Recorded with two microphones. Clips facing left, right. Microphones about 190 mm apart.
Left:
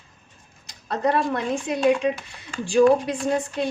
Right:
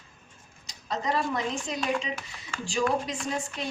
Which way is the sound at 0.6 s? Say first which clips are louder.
Left 7 dB; 60° left (ahead or behind).